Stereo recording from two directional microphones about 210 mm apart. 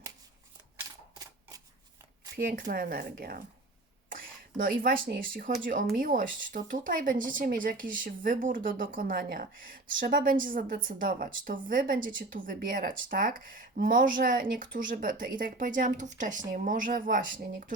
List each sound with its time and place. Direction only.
2.3 s speech: 45° right (ahead or behind)